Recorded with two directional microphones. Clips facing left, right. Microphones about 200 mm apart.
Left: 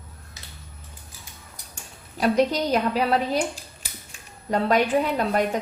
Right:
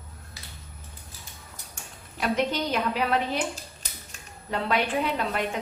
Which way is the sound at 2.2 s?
35° left (ahead or behind).